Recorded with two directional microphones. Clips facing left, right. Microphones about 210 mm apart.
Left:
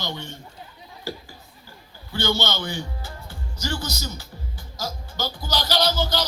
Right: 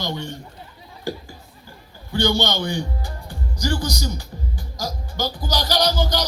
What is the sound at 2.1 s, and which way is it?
Speech, 15° right (ahead or behind).